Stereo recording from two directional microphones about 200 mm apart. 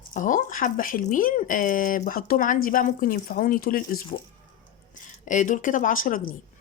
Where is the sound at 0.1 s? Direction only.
40° left (ahead or behind).